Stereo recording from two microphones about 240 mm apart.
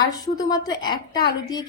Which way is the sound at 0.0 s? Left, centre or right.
Centre.